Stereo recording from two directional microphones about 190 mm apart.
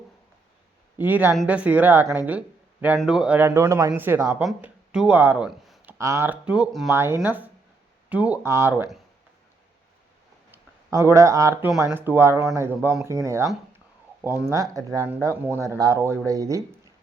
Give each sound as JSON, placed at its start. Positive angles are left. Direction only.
{"t": 0.9, "sound": "speech", "side_deg": -10}
{"t": 4.4, "sound": "speech", "side_deg": -5}
{"t": 6.0, "sound": "speech", "side_deg": -15}
{"t": 10.5, "sound": "speech", "side_deg": -15}